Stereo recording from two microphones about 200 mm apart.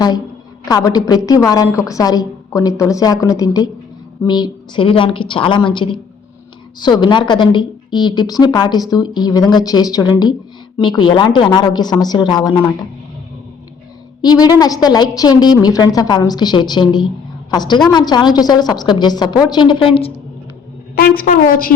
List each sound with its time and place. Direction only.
0.7 s a woman's voice: 20° left (ahead or behind)
14.2 s a woman's voice: 20° left (ahead or behind)
20.9 s a woman's voice: 50° left (ahead or behind)